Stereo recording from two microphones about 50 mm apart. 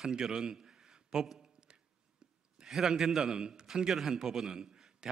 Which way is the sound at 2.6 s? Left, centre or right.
Centre.